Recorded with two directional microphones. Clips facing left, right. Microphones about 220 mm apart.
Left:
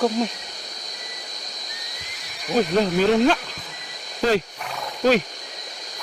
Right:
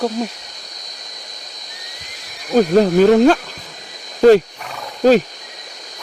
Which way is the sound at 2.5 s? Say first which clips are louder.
Right 8 dB; 45° right (ahead or behind).